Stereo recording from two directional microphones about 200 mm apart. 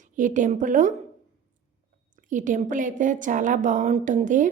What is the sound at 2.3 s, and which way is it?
A woman's voice, 40° right (ahead or behind).